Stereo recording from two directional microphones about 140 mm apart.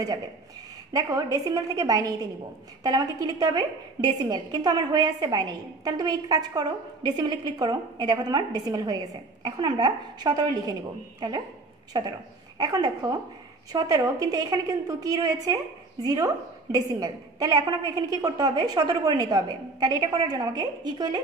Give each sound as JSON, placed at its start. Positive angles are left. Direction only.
{"t": 0.9, "sound": "a woman's voice", "side_deg": -25}